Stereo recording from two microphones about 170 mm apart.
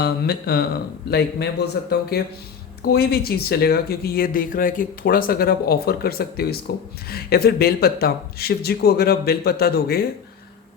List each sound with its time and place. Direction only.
0.0 s speech: 70° left (ahead or behind)